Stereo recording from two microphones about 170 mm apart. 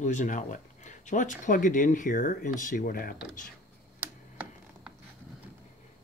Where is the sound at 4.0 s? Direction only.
10° right (ahead or behind).